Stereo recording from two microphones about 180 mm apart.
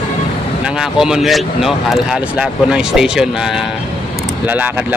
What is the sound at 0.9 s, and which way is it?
Speech, 5° right (ahead or behind).